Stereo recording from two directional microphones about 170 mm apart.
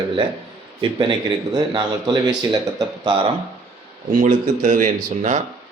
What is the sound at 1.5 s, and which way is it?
Speech, 25° right (ahead or behind).